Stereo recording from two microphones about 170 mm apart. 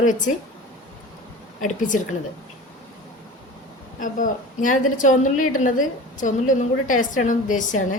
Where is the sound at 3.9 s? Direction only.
50° left (ahead or behind).